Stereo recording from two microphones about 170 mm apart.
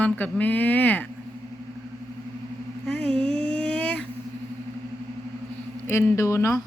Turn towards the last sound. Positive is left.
turn(degrees=15)  # may be behind; listen again after turning